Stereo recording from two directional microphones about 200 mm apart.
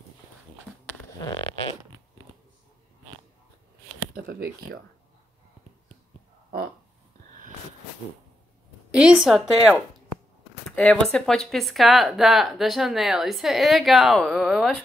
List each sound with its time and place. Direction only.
1.2 s fart: 20° left (ahead or behind)
4.1 s a sound: 50° right (ahead or behind)
8.9 s speech: 5° right (ahead or behind)
10.8 s speech: 5° left (ahead or behind)